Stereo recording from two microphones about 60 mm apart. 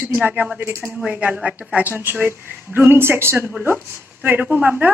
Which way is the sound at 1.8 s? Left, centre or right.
Right.